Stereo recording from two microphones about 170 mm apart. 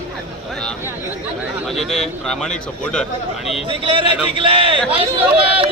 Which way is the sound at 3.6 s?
30° right (ahead or behind).